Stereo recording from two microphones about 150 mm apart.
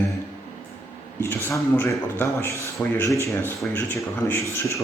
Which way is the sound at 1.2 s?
15° left (ahead or behind).